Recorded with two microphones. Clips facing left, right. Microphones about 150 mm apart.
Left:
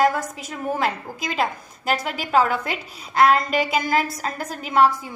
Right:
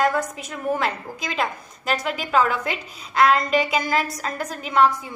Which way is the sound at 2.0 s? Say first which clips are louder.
Even; 40° left (ahead or behind).